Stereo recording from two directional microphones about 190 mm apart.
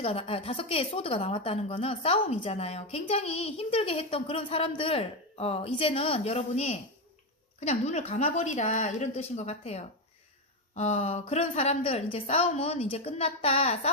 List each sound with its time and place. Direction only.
0.0 s a woman's voice: 30° left (ahead or behind)